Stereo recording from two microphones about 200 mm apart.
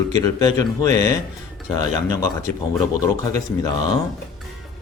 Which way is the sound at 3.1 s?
15° left (ahead or behind).